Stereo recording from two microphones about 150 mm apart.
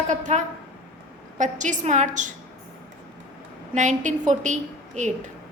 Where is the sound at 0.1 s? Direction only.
55° right (ahead or behind).